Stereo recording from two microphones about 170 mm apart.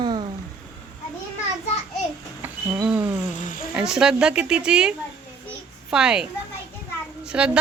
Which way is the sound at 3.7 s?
5° right (ahead or behind).